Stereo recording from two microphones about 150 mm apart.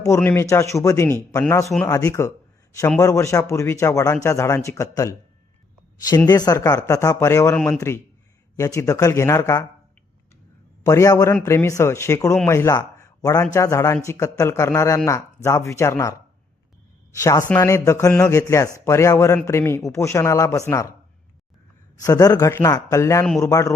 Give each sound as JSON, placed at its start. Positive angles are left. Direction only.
{"t": 0.2, "sound": "speech", "side_deg": 15}
{"t": 6.2, "sound": "speech", "side_deg": 25}
{"t": 7.5, "sound": "a man's voice", "side_deg": 5}
{"t": 8.5, "sound": "speech", "side_deg": 20}
{"t": 10.8, "sound": "a man's voice", "side_deg": 20}
{"t": 17.2, "sound": "speech", "side_deg": 20}
{"t": 22.0, "sound": "speech", "side_deg": 25}